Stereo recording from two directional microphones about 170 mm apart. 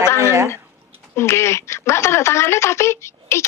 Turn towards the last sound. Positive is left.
turn(degrees=15)  # may be behind; listen again after turning